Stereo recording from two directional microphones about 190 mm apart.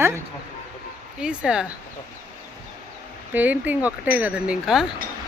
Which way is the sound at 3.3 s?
10° right (ahead or behind).